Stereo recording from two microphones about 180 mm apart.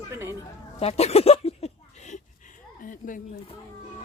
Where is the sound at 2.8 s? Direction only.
50° left (ahead or behind).